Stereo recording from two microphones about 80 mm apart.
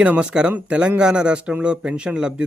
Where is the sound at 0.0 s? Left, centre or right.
Centre.